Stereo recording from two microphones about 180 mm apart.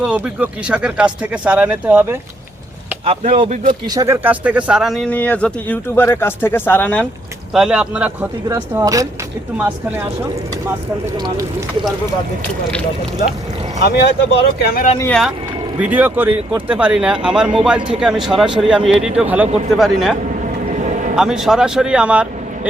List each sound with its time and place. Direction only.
0.0 s speech: 5° right (ahead or behind)
3.2 s speech: 40° right (ahead or behind)
3.7 s speech: 20° right (ahead or behind); by 7.1 s 10° left (ahead or behind)
7.5 s speech: 5° right (ahead or behind)
13.8 s speech: 65° left (ahead or behind)
15.0 s speech: 5° left (ahead or behind)
15.8 s speech: 10° right (ahead or behind)
21.2 s speech: 5° right (ahead or behind)